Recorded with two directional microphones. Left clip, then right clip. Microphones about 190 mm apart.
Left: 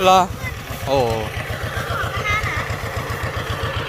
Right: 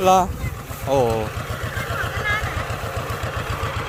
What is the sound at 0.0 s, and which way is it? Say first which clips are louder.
Speech: left 2 dB; 15° right (ahead or behind).